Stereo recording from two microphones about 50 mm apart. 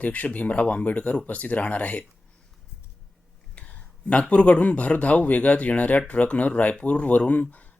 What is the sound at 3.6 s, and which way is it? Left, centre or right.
Speech, left.